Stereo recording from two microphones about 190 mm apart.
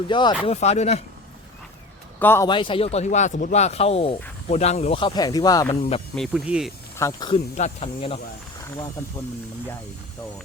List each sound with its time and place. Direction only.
0.1 s speech: 25° left (ahead or behind)
0.4 s speech: 35° left (ahead or behind)
2.1 s speech: 10° left (ahead or behind)
2.5 s speech: 25° left (ahead or behind)
6.1 s speech: centre (ahead or behind)
7.0 s speech: 20° left (ahead or behind)
7.5 s speech: 35° left (ahead or behind)